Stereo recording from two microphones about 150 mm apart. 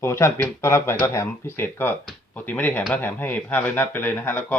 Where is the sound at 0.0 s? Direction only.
20° left (ahead or behind).